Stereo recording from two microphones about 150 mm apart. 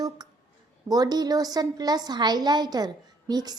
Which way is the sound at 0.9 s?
25° right (ahead or behind).